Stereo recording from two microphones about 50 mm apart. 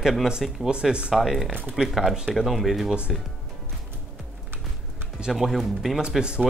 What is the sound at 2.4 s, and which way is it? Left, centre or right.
Speech, centre.